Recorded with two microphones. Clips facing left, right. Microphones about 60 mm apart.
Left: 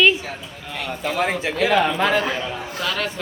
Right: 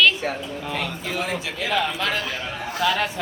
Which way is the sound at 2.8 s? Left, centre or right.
Centre.